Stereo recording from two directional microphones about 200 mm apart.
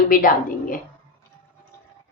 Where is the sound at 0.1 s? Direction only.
45° left (ahead or behind).